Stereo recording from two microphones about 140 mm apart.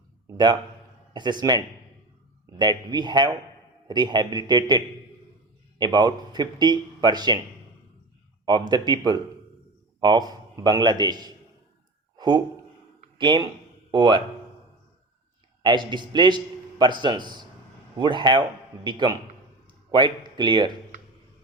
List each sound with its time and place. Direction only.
1.1 s a man's voice: 30° right (ahead or behind)
5.8 s a man's voice: 30° right (ahead or behind)
8.4 s a man's voice: 30° right (ahead or behind)
12.1 s a sound: 30° right (ahead or behind)
13.1 s speech: 30° right (ahead or behind)
15.6 s a man's voice: 35° right (ahead or behind)
20.2 s speech: 35° right (ahead or behind)